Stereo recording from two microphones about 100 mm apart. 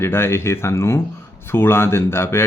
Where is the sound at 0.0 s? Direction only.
25° left (ahead or behind).